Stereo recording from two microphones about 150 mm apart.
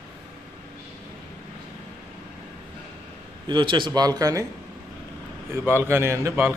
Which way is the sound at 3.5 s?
30° right (ahead or behind).